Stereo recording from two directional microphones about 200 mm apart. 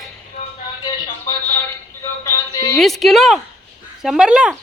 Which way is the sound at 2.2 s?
15° left (ahead or behind).